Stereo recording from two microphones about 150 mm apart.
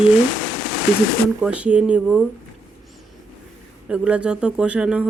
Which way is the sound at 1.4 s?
5° right (ahead or behind).